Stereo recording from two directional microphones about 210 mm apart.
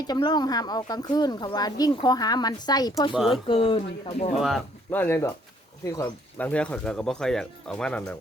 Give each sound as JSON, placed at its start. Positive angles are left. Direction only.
{"t": 0.0, "sound": "speech", "side_deg": 20}
{"t": 3.1, "sound": "speech", "side_deg": 0}
{"t": 3.4, "sound": "speech", "side_deg": 25}
{"t": 4.4, "sound": "speech", "side_deg": 0}